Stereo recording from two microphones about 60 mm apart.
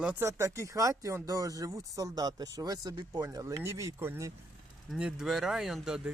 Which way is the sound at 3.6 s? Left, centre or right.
Right.